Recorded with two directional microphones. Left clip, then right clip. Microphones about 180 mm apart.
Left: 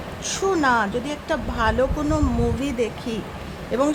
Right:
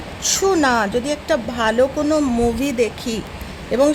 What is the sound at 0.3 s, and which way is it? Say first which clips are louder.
A woman's voice: right 4 dB; 30° right (ahead or behind).